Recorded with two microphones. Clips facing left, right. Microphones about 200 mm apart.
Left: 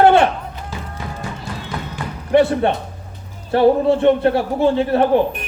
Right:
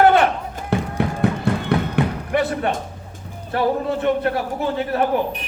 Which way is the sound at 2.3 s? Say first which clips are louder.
Left 8 dB; 30° left (ahead or behind).